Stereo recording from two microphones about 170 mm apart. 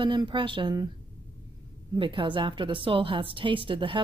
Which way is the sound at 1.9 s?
30° right (ahead or behind).